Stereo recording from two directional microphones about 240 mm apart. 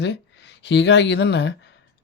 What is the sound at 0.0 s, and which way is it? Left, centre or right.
Speech, left.